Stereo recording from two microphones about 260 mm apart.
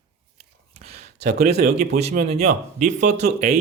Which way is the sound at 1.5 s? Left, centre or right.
Right.